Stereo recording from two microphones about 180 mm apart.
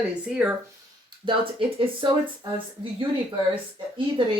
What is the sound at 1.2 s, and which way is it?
Speech, 30° right (ahead or behind).